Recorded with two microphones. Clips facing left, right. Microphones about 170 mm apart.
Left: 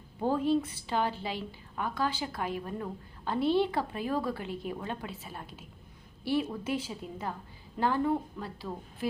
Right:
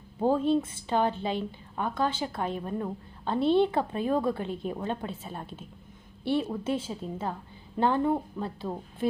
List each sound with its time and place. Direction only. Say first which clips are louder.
0.2 s a woman's voice: right 3 dB; 20° right (ahead or behind)
6.7 s a woman's voice: right 3 dB; 25° right (ahead or behind)